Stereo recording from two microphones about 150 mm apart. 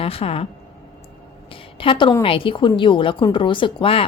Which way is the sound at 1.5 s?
35° left (ahead or behind).